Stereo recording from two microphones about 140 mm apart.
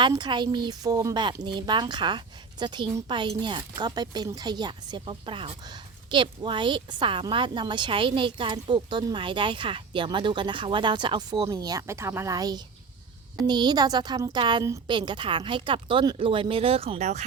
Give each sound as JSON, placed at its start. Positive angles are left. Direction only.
{"t": 0.0, "sound": "a woman's voice", "side_deg": -30}